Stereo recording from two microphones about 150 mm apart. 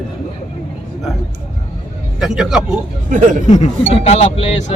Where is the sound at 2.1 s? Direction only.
5° right (ahead or behind).